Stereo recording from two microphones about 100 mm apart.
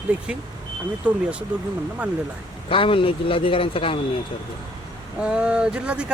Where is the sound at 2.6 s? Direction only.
65° left (ahead or behind).